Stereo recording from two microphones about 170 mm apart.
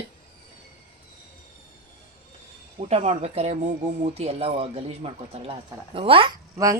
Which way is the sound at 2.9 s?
40° right (ahead or behind).